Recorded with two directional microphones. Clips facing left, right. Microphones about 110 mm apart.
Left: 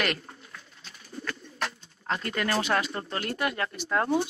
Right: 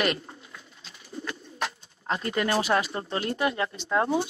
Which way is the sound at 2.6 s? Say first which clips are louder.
Right 2 dB; 10° right (ahead or behind).